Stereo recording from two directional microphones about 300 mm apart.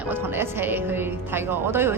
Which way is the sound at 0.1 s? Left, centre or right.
Centre.